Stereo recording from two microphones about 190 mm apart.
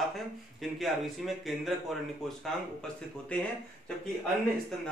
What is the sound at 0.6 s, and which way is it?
Speech, centre (ahead or behind).